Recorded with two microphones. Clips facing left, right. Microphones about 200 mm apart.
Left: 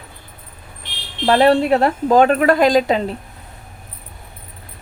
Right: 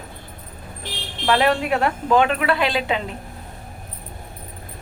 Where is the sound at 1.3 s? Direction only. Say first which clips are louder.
Left 6 dB; 35° left (ahead or behind).